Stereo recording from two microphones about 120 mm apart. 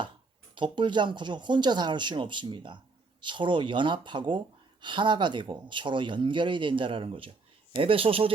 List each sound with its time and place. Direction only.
0.5 s speech: 45° right (ahead or behind)